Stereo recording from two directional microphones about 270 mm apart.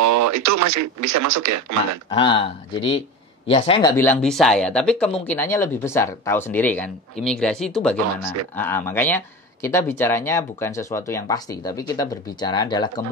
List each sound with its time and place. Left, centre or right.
0.0 s speech: right
2.0 s speech: centre
3.9 s speech: centre
8.2 s speech: right
8.5 s speech: centre